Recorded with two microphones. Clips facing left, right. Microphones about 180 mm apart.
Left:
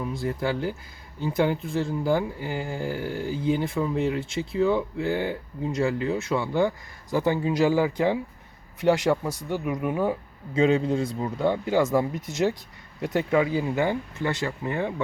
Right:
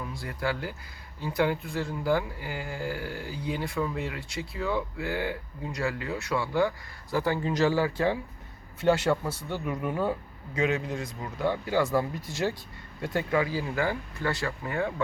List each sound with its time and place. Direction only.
0.0 s speech: 20° left (ahead or behind)
10.5 s speech: 30° left (ahead or behind)